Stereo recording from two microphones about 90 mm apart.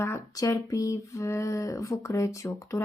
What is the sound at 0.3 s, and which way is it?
Speech, 40° left (ahead or behind).